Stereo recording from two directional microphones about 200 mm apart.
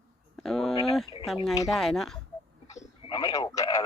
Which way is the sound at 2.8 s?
20° left (ahead or behind).